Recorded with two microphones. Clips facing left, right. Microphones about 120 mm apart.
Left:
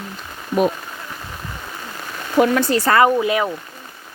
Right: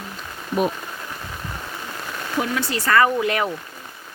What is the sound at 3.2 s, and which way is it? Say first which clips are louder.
Speech: left 3 dB; 5° left (ahead or behind).